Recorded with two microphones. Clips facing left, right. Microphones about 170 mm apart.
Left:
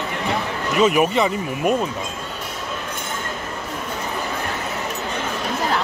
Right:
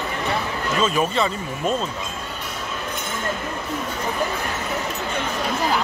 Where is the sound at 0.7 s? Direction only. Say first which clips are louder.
Left 5 dB; 15° left (ahead or behind).